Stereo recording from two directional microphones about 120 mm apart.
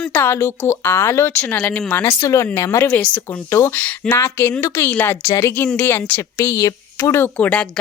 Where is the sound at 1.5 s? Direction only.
5° left (ahead or behind); by 2.8 s 20° left (ahead or behind).